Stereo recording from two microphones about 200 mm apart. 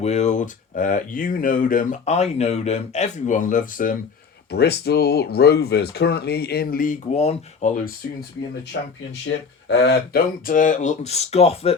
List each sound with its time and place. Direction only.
0.0 s speech: 35° left (ahead or behind)
4.5 s speech: 55° left (ahead or behind); by 7.7 s 35° left (ahead or behind)
8.7 s speech: 60° left (ahead or behind); by 11.7 s 30° left (ahead or behind)